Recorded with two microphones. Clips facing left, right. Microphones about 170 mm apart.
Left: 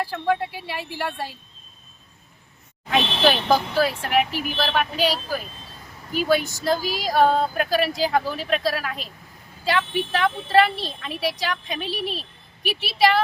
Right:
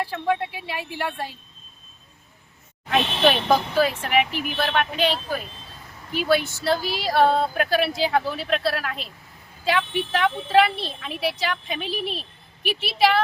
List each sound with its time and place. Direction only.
0.0 s speech: centre (ahead or behind)
2.9 s speech: centre (ahead or behind)
6.4 s speech: 40° left (ahead or behind)
7.0 s speech: centre (ahead or behind)